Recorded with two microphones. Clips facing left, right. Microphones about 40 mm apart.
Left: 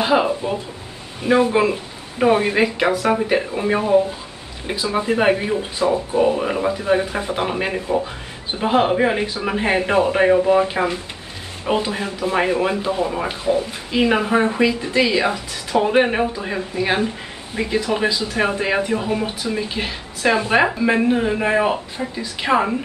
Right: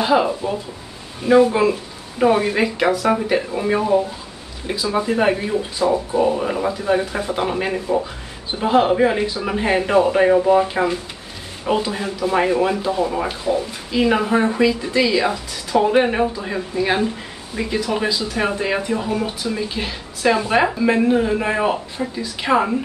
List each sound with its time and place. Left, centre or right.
0.0 s speech: centre
12.8 s speech: left
17.6 s speech: centre